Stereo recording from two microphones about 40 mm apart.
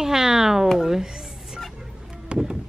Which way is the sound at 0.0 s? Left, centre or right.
Centre.